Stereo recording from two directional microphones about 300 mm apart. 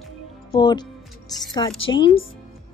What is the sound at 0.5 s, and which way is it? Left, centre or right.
Speech, centre.